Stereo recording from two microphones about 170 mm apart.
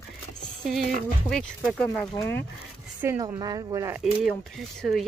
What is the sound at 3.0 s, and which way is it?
Speech, 20° right (ahead or behind).